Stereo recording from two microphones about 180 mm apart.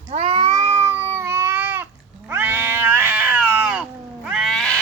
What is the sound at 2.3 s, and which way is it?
Cat, 10° right (ahead or behind).